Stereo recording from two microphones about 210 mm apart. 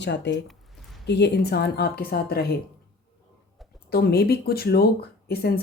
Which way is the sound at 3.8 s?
50° left (ahead or behind).